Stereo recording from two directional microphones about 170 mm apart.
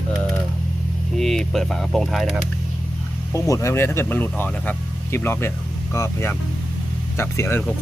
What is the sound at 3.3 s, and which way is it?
Speech, 20° left (ahead or behind).